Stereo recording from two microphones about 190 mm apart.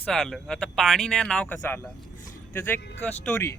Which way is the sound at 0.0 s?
5° left (ahead or behind).